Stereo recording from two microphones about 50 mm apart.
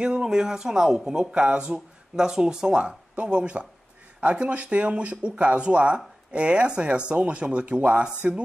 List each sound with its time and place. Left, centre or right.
0.0 s speech: centre
1.3 s speech: right
2.1 s speech: centre